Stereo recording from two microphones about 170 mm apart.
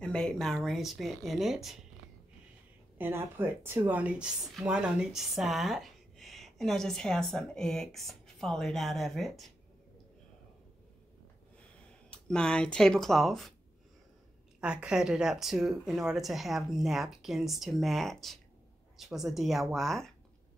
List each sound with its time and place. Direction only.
0.0 s speech: 5° left (ahead or behind)
3.0 s speech: 15° right (ahead or behind)
12.1 s speech: 5° left (ahead or behind)
14.6 s speech: 5° right (ahead or behind)